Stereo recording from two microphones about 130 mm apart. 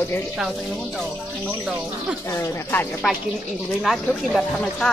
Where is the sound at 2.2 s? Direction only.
15° left (ahead or behind).